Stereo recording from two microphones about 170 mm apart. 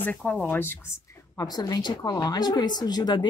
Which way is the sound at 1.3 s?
25° left (ahead or behind).